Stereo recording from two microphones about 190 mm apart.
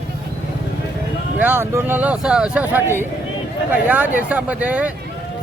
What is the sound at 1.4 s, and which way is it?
Speech, 10° right (ahead or behind).